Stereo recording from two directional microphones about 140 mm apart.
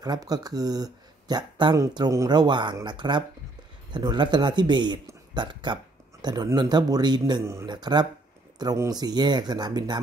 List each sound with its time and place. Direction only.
0.0 s speech: 25° right (ahead or behind)